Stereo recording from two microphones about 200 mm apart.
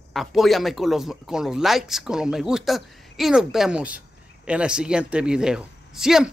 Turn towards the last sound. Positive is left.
turn(degrees=-5)  # may be behind; listen again after turning